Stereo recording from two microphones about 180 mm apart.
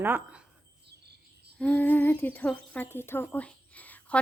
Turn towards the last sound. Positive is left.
turn(degrees=10)  # may be behind; listen again after turning